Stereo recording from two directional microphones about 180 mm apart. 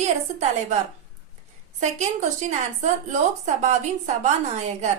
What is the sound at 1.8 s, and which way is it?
A woman's voice, 40° right (ahead or behind).